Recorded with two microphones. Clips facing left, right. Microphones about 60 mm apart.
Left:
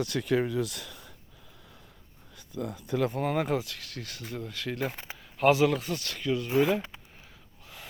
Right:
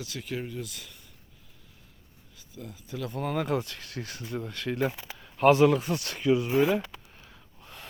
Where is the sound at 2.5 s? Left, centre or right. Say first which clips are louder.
Left 8 dB; left.